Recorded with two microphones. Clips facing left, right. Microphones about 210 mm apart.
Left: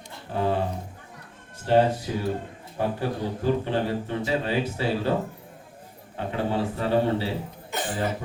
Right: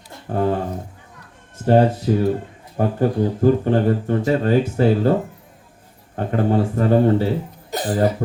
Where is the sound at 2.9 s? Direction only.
50° right (ahead or behind).